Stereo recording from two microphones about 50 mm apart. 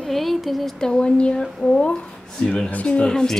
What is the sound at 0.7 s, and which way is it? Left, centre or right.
Speech, centre.